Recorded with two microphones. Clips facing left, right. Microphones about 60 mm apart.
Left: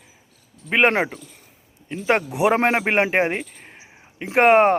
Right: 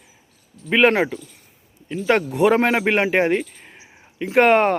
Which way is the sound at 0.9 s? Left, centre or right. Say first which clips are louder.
Right 2 dB; left.